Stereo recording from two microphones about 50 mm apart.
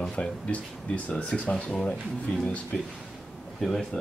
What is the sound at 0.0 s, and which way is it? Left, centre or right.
Speech, left.